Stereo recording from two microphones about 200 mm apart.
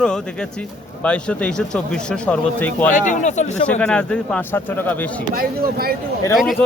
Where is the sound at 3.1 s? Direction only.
35° left (ahead or behind).